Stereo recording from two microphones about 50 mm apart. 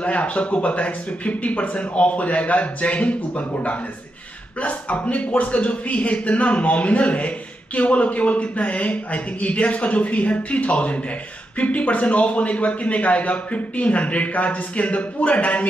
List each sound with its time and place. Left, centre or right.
0.0 s a man's voice: left